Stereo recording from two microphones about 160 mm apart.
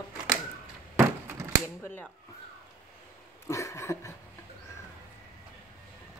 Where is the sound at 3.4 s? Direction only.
20° left (ahead or behind).